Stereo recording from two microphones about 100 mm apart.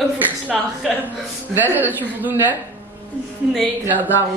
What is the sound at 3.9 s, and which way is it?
Speech, 15° right (ahead or behind).